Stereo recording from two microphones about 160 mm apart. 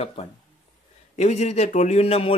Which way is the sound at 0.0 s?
35° left (ahead or behind).